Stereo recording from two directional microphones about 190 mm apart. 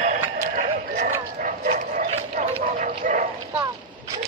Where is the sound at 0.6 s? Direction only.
45° right (ahead or behind).